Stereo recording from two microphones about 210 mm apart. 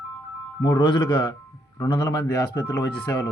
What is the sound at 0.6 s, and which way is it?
A man's voice, 20° left (ahead or behind).